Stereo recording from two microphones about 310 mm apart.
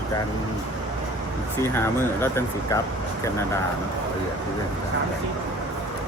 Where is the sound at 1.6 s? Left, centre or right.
Centre.